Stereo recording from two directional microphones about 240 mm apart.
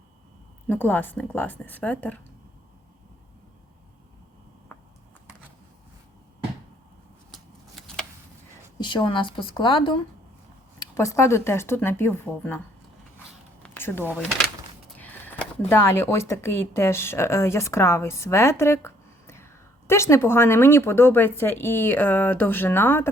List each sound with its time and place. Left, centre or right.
0.7 s speech: centre
7.3 s a sound: centre
8.8 s a woman's voice: centre
13.6 s zipper: centre
14.9 s a sound: centre
15.7 s speech: centre